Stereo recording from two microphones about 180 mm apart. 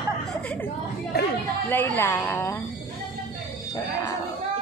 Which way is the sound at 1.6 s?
10° left (ahead or behind).